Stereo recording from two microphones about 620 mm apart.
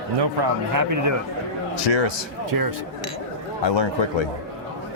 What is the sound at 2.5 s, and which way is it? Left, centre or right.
Speech, right.